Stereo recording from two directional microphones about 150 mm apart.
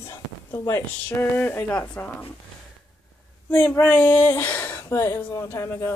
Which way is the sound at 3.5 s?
10° left (ahead or behind).